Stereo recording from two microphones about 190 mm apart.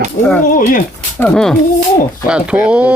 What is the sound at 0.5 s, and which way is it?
Speech, 45° left (ahead or behind).